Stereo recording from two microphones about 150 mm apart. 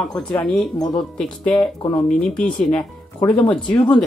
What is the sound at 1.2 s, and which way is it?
Speech, 5° left (ahead or behind).